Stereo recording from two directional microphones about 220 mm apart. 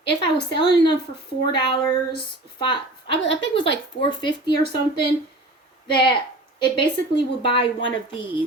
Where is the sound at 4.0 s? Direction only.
20° left (ahead or behind).